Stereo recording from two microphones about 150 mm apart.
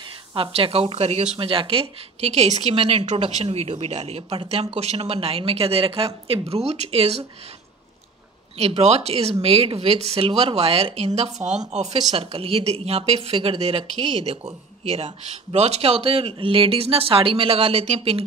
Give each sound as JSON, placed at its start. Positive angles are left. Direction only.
{"t": 0.3, "sound": "speech", "side_deg": -40}
{"t": 3.1, "sound": "speech", "side_deg": -50}
{"t": 8.5, "sound": "speech", "side_deg": -45}